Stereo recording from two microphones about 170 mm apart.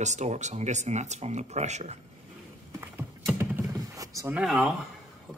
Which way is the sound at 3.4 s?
20° right (ahead or behind).